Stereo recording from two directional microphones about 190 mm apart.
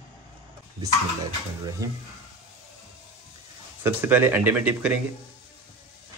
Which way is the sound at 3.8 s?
10° right (ahead or behind).